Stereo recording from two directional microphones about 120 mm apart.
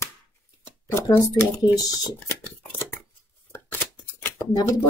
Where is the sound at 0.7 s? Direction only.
20° left (ahead or behind).